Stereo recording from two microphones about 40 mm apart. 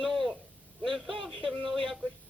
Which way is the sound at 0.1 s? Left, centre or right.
Centre.